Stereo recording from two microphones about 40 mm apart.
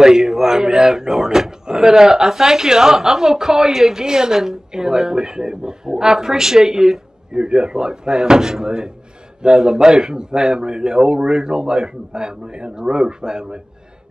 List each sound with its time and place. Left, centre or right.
0.0 s a woman's voice: centre
7.3 s a woman's voice: right
9.8 s a woman's voice: centre